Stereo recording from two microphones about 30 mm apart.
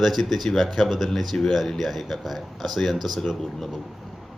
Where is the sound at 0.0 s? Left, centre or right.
Centre.